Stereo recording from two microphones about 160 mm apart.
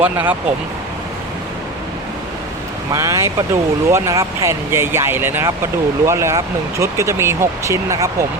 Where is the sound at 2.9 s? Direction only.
20° right (ahead or behind).